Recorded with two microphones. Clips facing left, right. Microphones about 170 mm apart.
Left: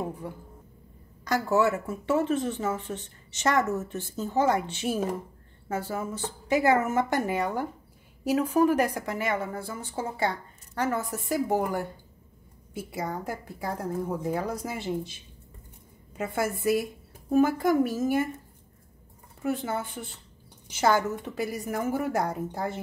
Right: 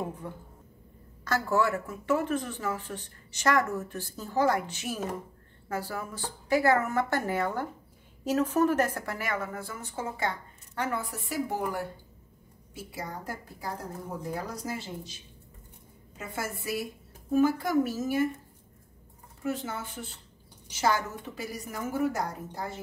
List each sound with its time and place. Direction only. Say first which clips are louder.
1.2 s a woman's voice: left 3 dB; 20° left (ahead or behind); by 13.1 s 55° left (ahead or behind)
14.3 s a woman's voice: left 4 dB; 55° left (ahead or behind)
16.2 s a woman's voice: left 7 dB; 55° left (ahead or behind)
19.4 s a woman's voice: left 4 dB; 55° left (ahead or behind)